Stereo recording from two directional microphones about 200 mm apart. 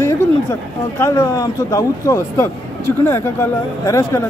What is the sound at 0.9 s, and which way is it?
Speech, 15° left (ahead or behind).